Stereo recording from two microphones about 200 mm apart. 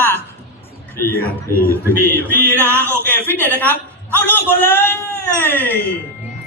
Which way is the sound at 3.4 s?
10° left (ahead or behind).